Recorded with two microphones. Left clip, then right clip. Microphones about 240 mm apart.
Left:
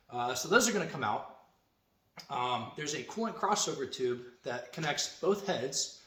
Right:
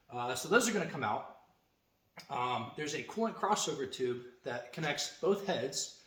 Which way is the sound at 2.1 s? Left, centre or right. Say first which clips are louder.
Left 2 dB; centre.